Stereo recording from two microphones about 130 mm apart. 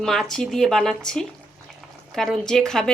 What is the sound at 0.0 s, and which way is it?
Speech, 5° left (ahead or behind).